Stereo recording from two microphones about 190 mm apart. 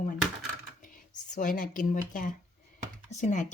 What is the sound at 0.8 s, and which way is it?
Speech, 45° left (ahead or behind).